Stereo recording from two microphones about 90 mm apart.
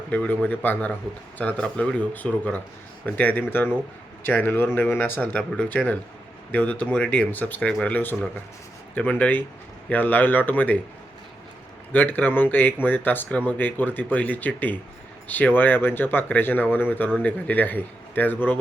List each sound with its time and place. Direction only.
0.1 s speech: 15° left (ahead or behind)
11.9 s speech: 20° left (ahead or behind)